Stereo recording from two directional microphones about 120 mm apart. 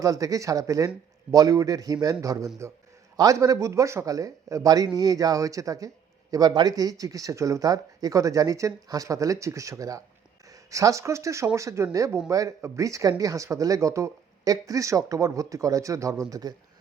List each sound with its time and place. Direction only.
0.0 s speech: 30° right (ahead or behind)